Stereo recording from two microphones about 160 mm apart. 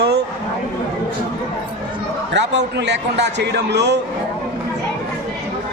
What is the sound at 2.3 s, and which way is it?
A man's voice, 90° right.